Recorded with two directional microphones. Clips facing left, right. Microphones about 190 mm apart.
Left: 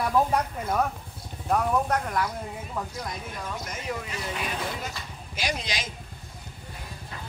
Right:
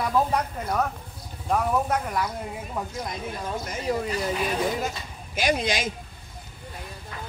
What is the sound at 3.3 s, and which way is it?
Speech, 35° right (ahead or behind).